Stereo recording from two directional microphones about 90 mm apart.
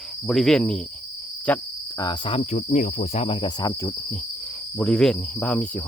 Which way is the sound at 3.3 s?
60° left (ahead or behind).